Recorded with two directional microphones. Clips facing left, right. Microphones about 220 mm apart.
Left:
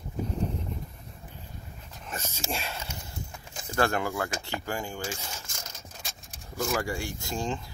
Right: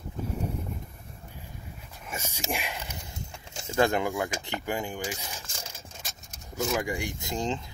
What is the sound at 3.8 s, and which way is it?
Speech, 20° right (ahead or behind).